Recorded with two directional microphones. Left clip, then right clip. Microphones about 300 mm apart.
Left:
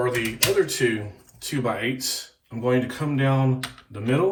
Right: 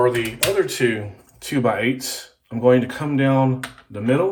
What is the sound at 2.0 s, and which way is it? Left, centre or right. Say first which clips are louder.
Speech: left 1 dB; centre.